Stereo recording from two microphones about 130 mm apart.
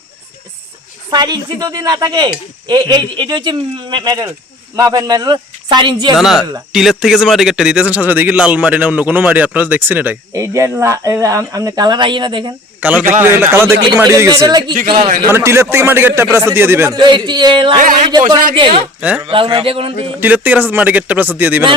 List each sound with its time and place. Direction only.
1.1 s speech: 35° right (ahead or behind)
6.1 s a man's voice: centre (ahead or behind); by 12.5 s 40° right (ahead or behind)
12.8 s a man's voice: 10° right (ahead or behind); by 14.6 s 30° right (ahead or behind)
14.8 s speech: 45° right (ahead or behind)
15.3 s a man's voice: 20° right (ahead or behind)
16.9 s speech: 35° right (ahead or behind)
17.7 s speech: 80° right
18.1 s speech: 30° right (ahead or behind)
18.9 s speech: 10° right (ahead or behind)
19.2 s speech: 45° right (ahead or behind)
20.1 s a man's voice: 15° right (ahead or behind)